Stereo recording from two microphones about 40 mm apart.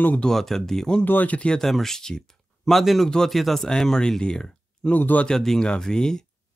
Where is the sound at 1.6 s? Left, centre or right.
Centre.